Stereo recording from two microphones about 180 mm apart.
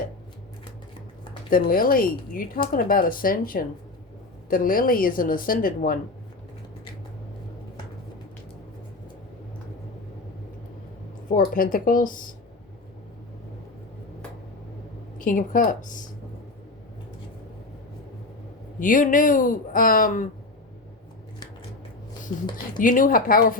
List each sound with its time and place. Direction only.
1.5 s speech: 55° left (ahead or behind)
11.3 s speech: 50° left (ahead or behind)
15.2 s speech: 50° left (ahead or behind)
18.8 s speech: 50° left (ahead or behind)
22.8 s speech: 50° left (ahead or behind)